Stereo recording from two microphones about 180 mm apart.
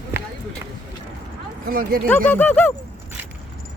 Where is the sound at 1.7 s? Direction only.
50° right (ahead or behind).